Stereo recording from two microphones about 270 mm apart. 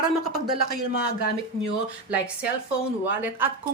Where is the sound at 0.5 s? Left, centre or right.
Right.